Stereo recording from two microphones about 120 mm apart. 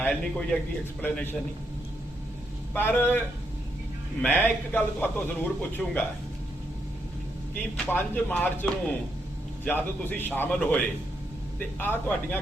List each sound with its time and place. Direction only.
0.0 s a man's voice: 10° left (ahead or behind)
2.7 s a man's voice: 15° left (ahead or behind)
4.2 s a man's voice: 15° left (ahead or behind)
7.5 s a man's voice: 15° left (ahead or behind)